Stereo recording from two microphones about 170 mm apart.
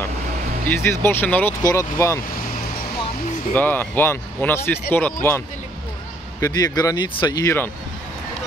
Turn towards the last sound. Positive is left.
turn(degrees=25)  # may be behind; listen again after turning